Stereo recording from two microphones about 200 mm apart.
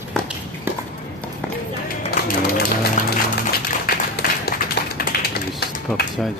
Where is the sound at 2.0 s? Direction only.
45° left (ahead or behind).